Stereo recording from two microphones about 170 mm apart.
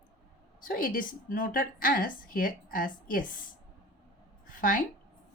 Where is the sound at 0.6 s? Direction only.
55° left (ahead or behind).